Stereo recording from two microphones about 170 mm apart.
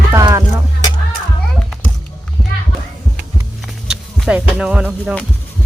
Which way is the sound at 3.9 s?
5° right (ahead or behind).